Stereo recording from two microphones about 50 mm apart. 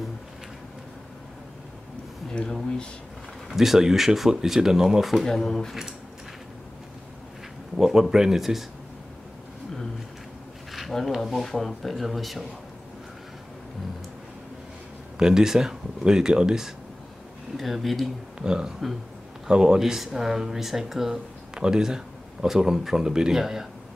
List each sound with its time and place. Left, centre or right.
2.3 s speech: centre
3.4 s speech: centre
5.2 s speech: centre
7.7 s speech: centre
10.7 s speech: centre
15.1 s speech: centre
17.6 s speech: centre
18.4 s speech: centre